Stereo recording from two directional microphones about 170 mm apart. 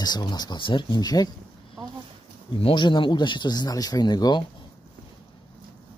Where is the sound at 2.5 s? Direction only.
30° left (ahead or behind).